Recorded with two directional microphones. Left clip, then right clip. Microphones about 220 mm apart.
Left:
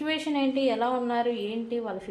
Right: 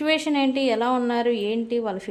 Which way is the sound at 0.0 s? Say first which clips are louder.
Right 6 dB; 40° right (ahead or behind).